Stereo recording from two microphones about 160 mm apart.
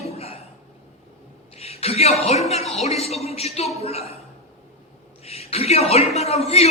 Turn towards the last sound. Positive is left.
turn(degrees=40)  # may be behind; listen again after turning